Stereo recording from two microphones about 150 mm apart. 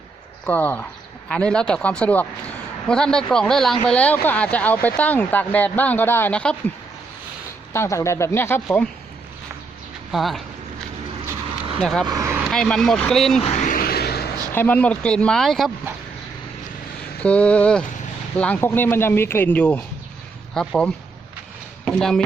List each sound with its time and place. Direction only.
0.4 s speech: 10° left (ahead or behind)
7.7 s speech: 20° left (ahead or behind)
10.1 s speech: centre (ahead or behind)
11.8 s speech: 5° left (ahead or behind)
12.0 s speech: 25° right (ahead or behind)
12.5 s speech: 5° left (ahead or behind)
13.4 s a sound: 55° left (ahead or behind); by 14.2 s 90° left
14.5 s speech: 10° left (ahead or behind)
17.2 s speech: 10° left (ahead or behind)